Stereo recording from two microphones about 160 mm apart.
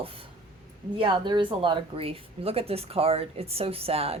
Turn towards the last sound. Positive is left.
turn(degrees=-40)  # may be behind; listen again after turning